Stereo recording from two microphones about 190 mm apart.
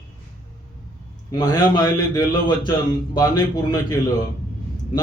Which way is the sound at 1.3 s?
20° left (ahead or behind).